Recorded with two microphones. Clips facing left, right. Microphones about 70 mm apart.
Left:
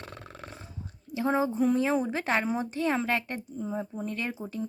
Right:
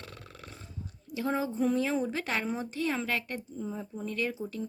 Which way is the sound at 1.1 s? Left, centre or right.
Left.